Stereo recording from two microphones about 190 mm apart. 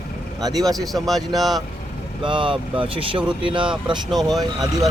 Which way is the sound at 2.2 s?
25° right (ahead or behind).